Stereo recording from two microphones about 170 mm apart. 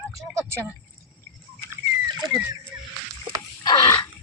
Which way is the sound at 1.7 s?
25° right (ahead or behind).